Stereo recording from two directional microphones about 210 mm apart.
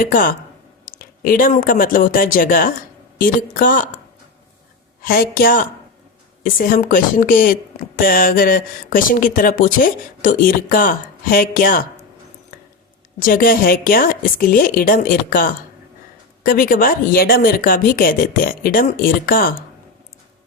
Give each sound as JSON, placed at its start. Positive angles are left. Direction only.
{"t": 0.0, "sound": "speech", "side_deg": 40}
{"t": 5.0, "sound": "speech", "side_deg": 45}
{"t": 13.1, "sound": "speech", "side_deg": 40}